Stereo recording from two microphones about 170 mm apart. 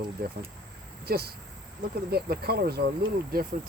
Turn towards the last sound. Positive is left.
turn(degrees=-65)  # may be behind; listen again after turning